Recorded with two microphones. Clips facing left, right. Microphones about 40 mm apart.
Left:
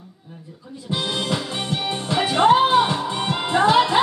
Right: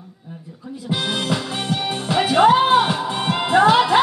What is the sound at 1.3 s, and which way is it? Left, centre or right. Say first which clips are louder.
Music: right 2 dB; centre.